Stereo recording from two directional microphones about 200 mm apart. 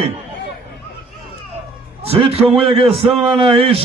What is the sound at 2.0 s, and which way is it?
A man's voice, 30° right (ahead or behind).